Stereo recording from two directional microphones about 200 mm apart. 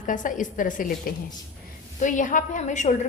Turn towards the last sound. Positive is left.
turn(degrees=35)  # may be behind; listen again after turning